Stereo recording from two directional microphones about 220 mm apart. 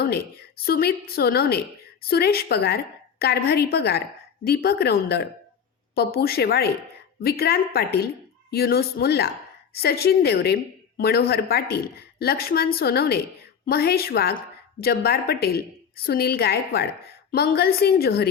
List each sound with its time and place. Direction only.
0.6 s a woman's voice: 45° left (ahead or behind)